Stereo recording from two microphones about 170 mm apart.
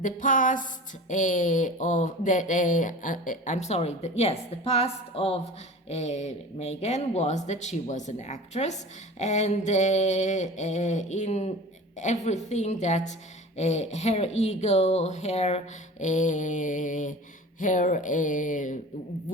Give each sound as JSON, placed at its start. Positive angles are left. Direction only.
{"t": 0.0, "sound": "speech", "side_deg": 50}